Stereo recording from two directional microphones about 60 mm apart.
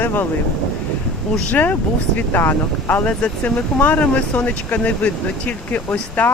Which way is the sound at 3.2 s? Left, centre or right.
Centre.